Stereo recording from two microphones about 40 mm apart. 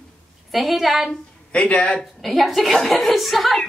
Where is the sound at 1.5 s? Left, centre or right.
Left.